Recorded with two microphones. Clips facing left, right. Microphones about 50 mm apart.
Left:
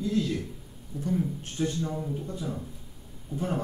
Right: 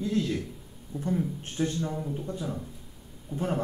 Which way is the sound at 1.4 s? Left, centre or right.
Right.